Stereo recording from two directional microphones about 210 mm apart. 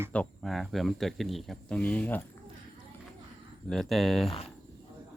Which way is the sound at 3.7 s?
Centre (ahead or behind).